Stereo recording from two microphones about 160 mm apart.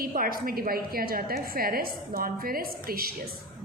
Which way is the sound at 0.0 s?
65° right (ahead or behind).